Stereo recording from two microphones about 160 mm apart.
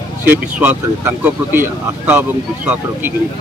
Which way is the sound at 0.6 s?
10° right (ahead or behind).